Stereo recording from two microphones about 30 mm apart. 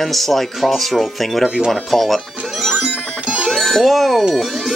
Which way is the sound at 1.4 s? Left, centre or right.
Right.